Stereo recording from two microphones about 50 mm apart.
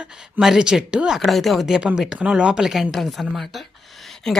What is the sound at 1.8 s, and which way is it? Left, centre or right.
Speech, right.